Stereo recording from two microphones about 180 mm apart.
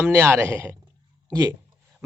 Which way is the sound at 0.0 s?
15° right (ahead or behind).